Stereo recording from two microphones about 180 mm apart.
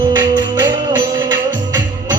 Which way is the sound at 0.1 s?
25° right (ahead or behind).